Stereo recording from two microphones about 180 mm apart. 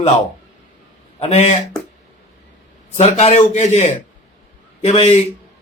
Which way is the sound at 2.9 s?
40° left (ahead or behind).